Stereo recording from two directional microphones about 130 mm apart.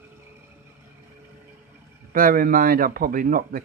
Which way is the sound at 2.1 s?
90° right.